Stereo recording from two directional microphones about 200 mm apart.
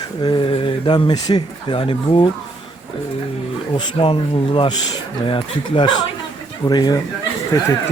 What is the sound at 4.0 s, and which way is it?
Speech, 25° left (ahead or behind).